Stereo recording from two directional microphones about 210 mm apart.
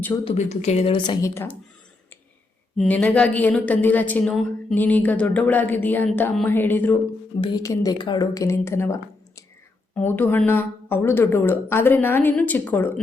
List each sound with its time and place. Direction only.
0.3 s speech: 30° left (ahead or behind); by 1.5 s 10° left (ahead or behind)
2.7 s a woman's voice: 5° left (ahead or behind)